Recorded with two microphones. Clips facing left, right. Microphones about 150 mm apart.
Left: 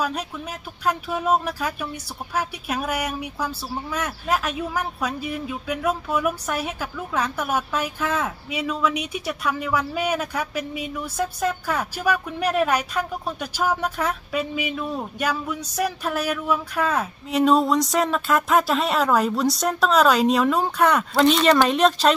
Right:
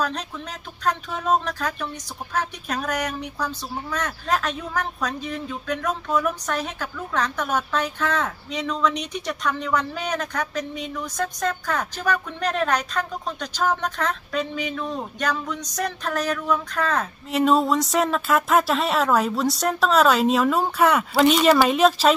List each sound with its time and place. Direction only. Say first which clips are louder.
0.0 s speech: left 1 dB; 10° left (ahead or behind)